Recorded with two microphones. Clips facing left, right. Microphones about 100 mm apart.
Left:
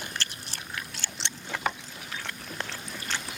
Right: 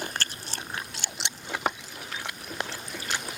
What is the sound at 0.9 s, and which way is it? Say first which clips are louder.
Biting: right 1 dB; 15° right (ahead or behind).